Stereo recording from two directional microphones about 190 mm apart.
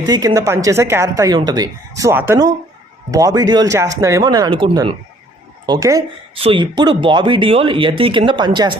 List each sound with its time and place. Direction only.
0.0 s speech: 20° right (ahead or behind)
6.3 s speech: 30° right (ahead or behind)